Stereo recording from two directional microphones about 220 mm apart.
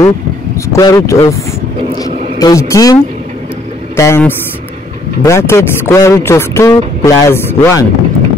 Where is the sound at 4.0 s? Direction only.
10° left (ahead or behind).